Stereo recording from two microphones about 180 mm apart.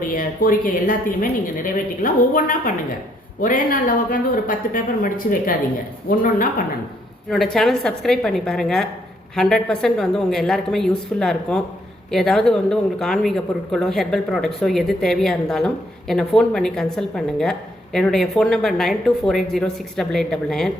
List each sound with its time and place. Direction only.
0.1 s a woman's voice: 50° left (ahead or behind)
7.3 s speech: 5° left (ahead or behind)